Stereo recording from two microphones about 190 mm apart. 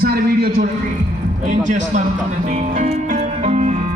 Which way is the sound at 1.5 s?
40° right (ahead or behind).